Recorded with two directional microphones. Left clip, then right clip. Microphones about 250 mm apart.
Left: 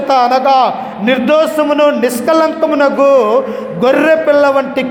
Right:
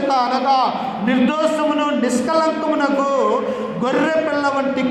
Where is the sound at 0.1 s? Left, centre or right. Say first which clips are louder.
Left 9 dB; left.